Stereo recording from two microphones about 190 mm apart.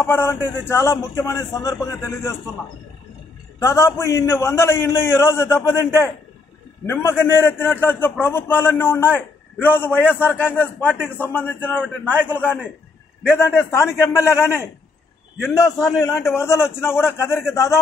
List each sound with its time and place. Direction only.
0.0 s a man's voice: 15° left (ahead or behind)
3.5 s a man's voice: 15° left (ahead or behind)